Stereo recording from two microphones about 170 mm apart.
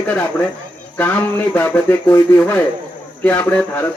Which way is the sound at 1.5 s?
10° left (ahead or behind).